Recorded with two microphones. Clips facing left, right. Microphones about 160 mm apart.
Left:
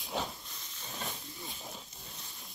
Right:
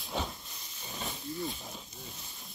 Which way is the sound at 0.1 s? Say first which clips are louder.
Right 1 dB; 5° left (ahead or behind).